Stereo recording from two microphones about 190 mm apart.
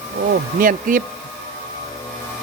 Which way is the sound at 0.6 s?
45° right (ahead or behind).